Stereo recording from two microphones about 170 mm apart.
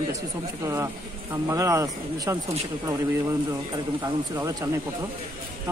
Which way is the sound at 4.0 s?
20° right (ahead or behind).